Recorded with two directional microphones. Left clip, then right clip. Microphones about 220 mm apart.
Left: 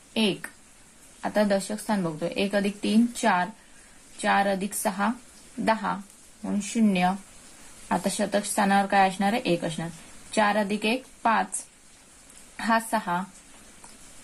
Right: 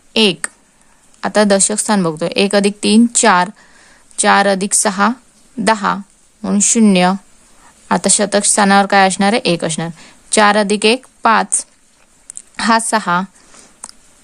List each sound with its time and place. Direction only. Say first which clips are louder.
0.1 s a woman's voice: right 13 dB; 50° right (ahead or behind)
12.5 s a woman's voice: right 11 dB; 45° right (ahead or behind)